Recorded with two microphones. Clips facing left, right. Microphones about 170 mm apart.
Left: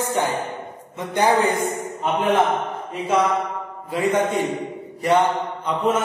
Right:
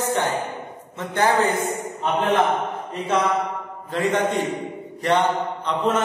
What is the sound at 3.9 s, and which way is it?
A man's voice, 10° left (ahead or behind).